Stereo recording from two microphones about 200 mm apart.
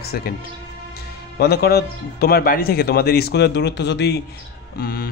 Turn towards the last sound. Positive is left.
turn(degrees=50)  # may be behind; listen again after turning